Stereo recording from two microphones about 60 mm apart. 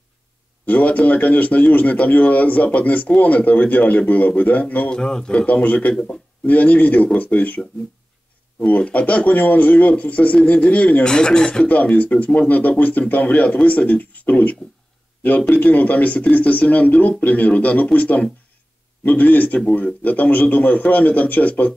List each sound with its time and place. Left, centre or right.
0.7 s speech: left
4.9 s speech: centre
5.5 s speech: left
11.1 s speech: centre
11.7 s speech: left